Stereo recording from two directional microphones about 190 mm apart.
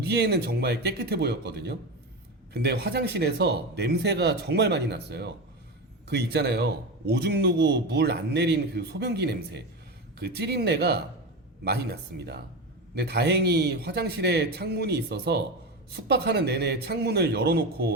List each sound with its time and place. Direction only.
0.0 s a man's voice: 60° right (ahead or behind)